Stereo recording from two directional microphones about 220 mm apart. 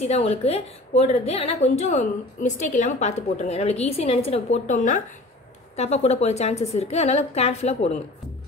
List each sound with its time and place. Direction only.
0.0 s a woman's voice: 30° left (ahead or behind)